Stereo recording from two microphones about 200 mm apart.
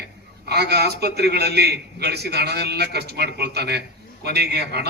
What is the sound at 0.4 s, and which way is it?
A man's voice, 55° right (ahead or behind).